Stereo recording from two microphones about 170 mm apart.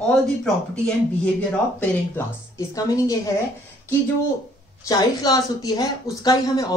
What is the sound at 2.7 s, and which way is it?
Speech, 20° left (ahead or behind).